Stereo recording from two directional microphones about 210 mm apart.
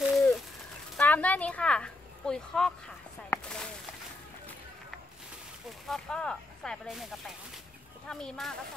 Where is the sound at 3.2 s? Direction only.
5° left (ahead or behind).